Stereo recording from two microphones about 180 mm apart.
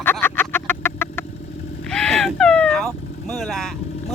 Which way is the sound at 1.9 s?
5° left (ahead or behind).